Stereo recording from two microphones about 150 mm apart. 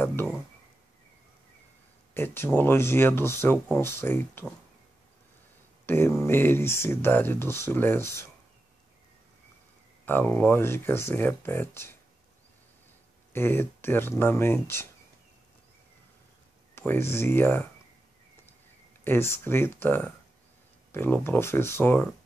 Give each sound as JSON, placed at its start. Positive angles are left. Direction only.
{"t": 0.0, "sound": "a sound", "side_deg": 15}
{"t": 2.1, "sound": "speech", "side_deg": 15}
{"t": 5.9, "sound": "speech", "side_deg": 15}
{"t": 10.0, "sound": "speech", "side_deg": 15}
{"t": 13.3, "sound": "speech", "side_deg": 15}
{"t": 16.7, "sound": "speech", "side_deg": 15}
{"t": 19.0, "sound": "speech", "side_deg": 15}